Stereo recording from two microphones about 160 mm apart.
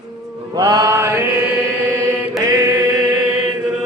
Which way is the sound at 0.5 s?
25° right (ahead or behind).